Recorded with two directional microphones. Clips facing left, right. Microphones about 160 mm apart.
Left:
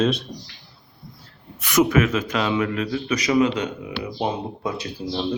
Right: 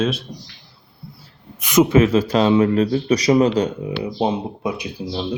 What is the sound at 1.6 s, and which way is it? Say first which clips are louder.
A man's voice: right 4 dB; 20° right (ahead or behind).